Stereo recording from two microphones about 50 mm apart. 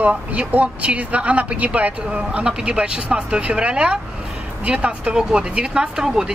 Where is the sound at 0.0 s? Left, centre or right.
Right.